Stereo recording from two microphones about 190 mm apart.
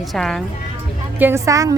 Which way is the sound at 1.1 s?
10° right (ahead or behind).